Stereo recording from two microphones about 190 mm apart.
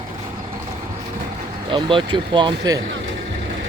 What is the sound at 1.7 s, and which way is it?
Speech, 25° right (ahead or behind).